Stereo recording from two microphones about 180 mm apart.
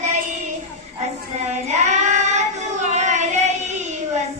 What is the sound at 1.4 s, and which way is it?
Child singing, 40° right (ahead or behind).